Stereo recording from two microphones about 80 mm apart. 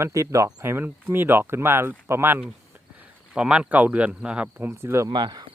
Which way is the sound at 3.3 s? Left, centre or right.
Centre.